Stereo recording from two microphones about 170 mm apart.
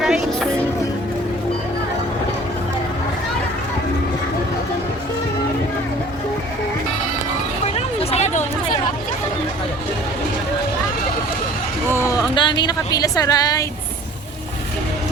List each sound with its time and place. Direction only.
0.0 s music: centre (ahead or behind)
7.8 s hubbub: 40° left (ahead or behind)
11.9 s a sound: 20° left (ahead or behind)
12.3 s speech: 30° left (ahead or behind)